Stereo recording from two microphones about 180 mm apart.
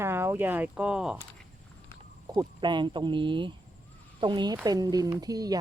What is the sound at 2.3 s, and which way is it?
Speech, 25° right (ahead or behind).